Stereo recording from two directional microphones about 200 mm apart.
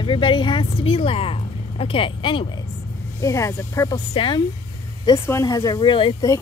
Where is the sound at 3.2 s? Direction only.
15° left (ahead or behind).